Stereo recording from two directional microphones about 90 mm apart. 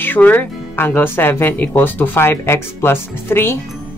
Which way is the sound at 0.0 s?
20° left (ahead or behind).